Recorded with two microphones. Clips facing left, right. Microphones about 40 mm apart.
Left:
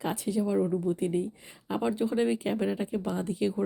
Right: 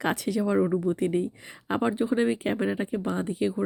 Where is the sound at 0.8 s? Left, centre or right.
Right.